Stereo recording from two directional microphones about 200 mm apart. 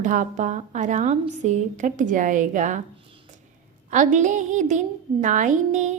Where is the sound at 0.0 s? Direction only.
40° right (ahead or behind).